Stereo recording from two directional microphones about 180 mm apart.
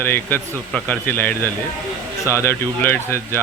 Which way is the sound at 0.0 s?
10° left (ahead or behind).